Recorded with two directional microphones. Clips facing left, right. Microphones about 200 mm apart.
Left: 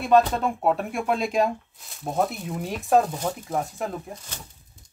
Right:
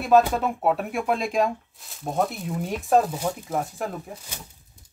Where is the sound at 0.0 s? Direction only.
5° right (ahead or behind).